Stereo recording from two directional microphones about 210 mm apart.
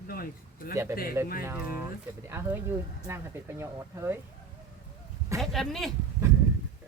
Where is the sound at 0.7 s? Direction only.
15° right (ahead or behind).